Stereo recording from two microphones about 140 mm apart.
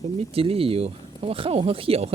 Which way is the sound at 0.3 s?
45° right (ahead or behind).